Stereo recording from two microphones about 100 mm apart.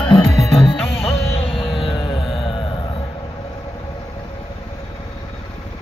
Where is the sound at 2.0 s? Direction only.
55° left (ahead or behind).